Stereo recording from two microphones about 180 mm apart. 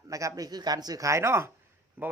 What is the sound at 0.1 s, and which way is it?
A man's voice, 20° right (ahead or behind).